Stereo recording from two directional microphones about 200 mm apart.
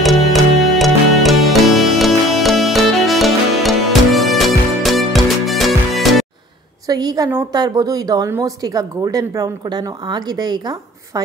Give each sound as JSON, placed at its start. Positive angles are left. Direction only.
{"t": 0.0, "sound": "music", "side_deg": 0}
{"t": 6.9, "sound": "a woman's voice", "side_deg": -20}